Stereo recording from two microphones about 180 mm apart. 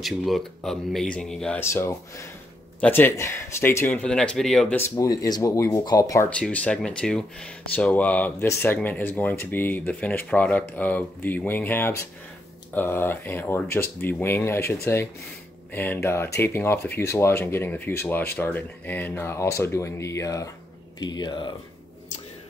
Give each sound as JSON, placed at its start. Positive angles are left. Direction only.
{"t": 0.0, "sound": "speech", "side_deg": 0}
{"t": 6.3, "sound": "speech", "side_deg": 5}